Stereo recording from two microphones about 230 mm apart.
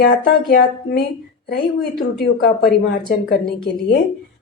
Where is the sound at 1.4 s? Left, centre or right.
Left.